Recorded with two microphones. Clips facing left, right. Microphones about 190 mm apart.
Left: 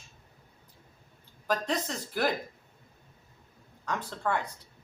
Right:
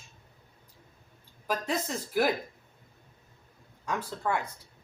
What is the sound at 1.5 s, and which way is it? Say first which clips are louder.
Speech: left 1 dB; 10° right (ahead or behind).